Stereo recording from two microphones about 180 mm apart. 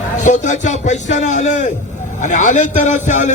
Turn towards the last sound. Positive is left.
turn(degrees=40)  # may be behind; listen again after turning